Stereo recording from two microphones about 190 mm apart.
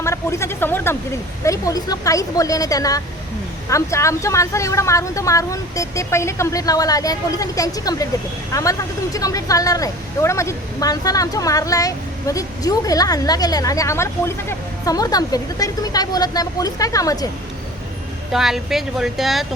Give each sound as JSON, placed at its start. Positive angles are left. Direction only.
{"t": 0.0, "sound": "a woman's voice", "side_deg": 15}
{"t": 9.1, "sound": "a woman's voice", "side_deg": 20}
{"t": 18.3, "sound": "speech", "side_deg": 0}